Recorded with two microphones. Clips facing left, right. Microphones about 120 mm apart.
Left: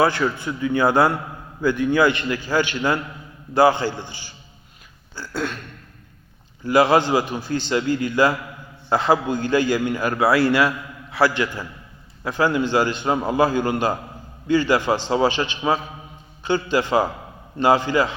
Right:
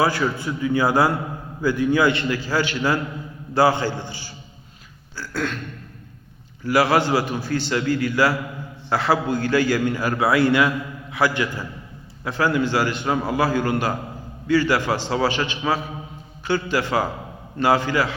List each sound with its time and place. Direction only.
0.2 s a man's voice: centre (ahead or behind)
0.6 s a man's voice: 10° right (ahead or behind)
2.1 s a man's voice: 20° left (ahead or behind)
5.1 s throat clearing: 15° left (ahead or behind)
6.7 s a man's voice: 20° left (ahead or behind)
10.3 s a man's voice: 20° right (ahead or behind)
12.2 s a man's voice: 20° left (ahead or behind)